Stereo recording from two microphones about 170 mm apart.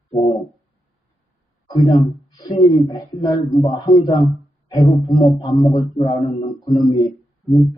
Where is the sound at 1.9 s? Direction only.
20° left (ahead or behind).